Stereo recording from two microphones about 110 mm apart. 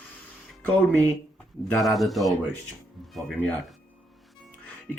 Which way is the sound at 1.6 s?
Centre (ahead or behind).